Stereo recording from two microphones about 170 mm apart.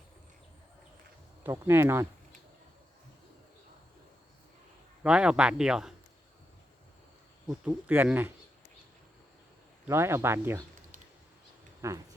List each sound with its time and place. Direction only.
1.5 s speech: 15° right (ahead or behind)
5.0 s speech: 5° right (ahead or behind)
7.4 s speech: 5° right (ahead or behind)
9.8 s speech: 15° right (ahead or behind)
11.8 s speech: 15° right (ahead or behind)